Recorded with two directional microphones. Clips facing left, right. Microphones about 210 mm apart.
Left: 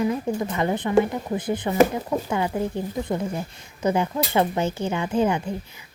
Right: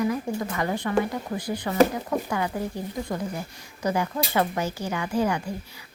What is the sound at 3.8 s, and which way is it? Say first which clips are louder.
A woman's voice: left 3 dB; 25° left (ahead or behind).